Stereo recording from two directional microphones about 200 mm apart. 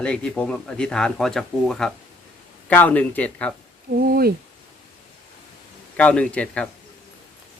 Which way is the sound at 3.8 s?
50° right (ahead or behind).